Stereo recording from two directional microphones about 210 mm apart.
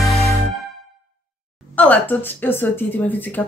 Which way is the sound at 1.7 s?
10° left (ahead or behind).